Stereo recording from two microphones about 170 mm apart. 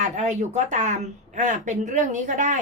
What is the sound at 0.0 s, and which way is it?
A woman's voice, 45° right (ahead or behind).